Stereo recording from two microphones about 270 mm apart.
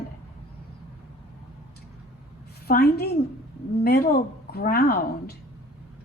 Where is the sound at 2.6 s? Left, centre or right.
Left.